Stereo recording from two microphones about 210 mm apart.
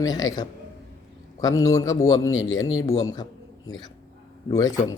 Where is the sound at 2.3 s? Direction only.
70° left (ahead or behind).